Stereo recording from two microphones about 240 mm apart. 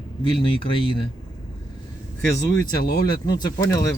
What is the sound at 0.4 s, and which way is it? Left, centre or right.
Speech, left.